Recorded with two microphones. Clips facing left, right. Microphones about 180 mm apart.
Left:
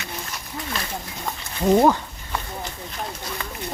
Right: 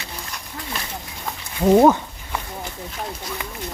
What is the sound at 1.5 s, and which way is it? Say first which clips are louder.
Speech: right 3 dB; 5° right (ahead or behind).